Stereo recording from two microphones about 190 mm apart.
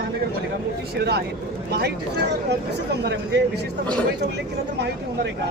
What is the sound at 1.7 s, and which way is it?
Speech, 60° right (ahead or behind).